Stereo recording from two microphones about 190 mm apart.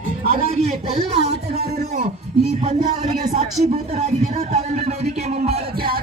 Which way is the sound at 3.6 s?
35° right (ahead or behind).